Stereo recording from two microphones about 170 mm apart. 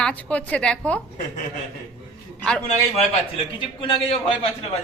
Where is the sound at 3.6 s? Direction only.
30° left (ahead or behind).